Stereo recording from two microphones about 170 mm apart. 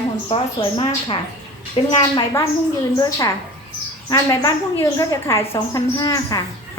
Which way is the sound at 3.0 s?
20° left (ahead or behind).